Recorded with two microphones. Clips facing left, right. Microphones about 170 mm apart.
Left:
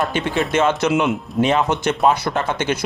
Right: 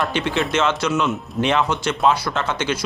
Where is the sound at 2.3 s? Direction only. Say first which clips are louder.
Left 3 dB; 15° left (ahead or behind).